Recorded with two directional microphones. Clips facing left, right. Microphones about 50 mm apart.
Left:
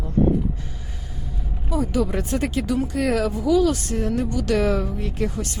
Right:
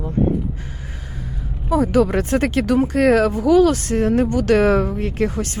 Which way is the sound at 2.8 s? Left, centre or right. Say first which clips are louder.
Right 8 dB; right.